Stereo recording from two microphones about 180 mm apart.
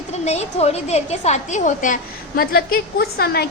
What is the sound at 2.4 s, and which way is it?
A woman's voice, 55° left (ahead or behind).